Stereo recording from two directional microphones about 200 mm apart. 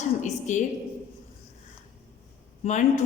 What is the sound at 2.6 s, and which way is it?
Speech, 35° left (ahead or behind).